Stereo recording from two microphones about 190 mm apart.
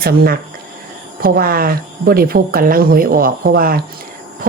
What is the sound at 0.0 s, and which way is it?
Speech, 50° right (ahead or behind).